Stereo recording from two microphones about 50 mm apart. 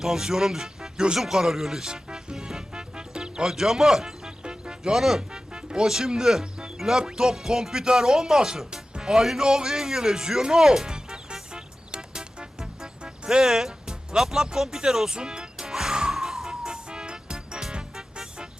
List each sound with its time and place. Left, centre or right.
0.0 s speech: centre
1.2 s music: centre
3.5 s speech: centre
11.5 s music: centre